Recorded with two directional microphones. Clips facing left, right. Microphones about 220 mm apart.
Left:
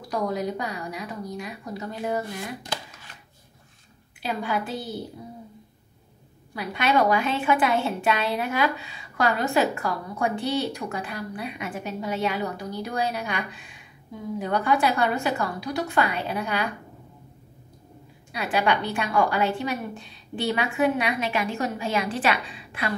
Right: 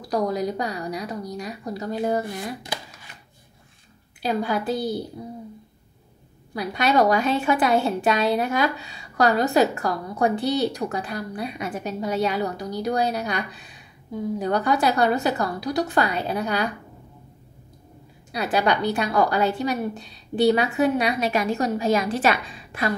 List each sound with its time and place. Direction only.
0.1 s a woman's voice: 35° right (ahead or behind)
2.6 s a sound: 10° right (ahead or behind)
4.2 s a woman's voice: 40° right (ahead or behind)
6.5 s a woman's voice: 40° right (ahead or behind)
18.3 s a woman's voice: 40° right (ahead or behind)